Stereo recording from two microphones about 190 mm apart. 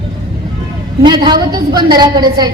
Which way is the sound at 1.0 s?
25° right (ahead or behind).